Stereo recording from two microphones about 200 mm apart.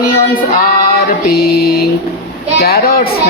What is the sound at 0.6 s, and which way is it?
Speech, 45° left (ahead or behind).